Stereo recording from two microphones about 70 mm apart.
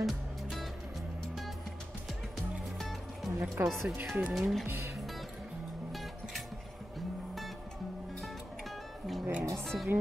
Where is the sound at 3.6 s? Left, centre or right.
Right.